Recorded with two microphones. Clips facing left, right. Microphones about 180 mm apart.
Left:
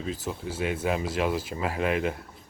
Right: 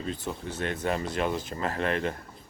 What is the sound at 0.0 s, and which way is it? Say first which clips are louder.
Speech: left 1 dB; 5° left (ahead or behind).